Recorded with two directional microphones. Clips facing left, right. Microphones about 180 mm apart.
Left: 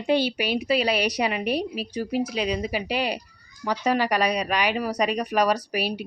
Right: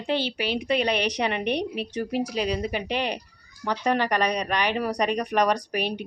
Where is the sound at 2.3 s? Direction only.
40° right (ahead or behind).